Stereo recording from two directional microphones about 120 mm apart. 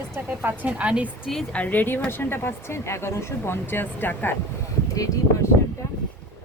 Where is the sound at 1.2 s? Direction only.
5° left (ahead or behind).